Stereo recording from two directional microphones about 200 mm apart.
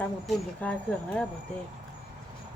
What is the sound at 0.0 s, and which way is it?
Speech, 5° left (ahead or behind).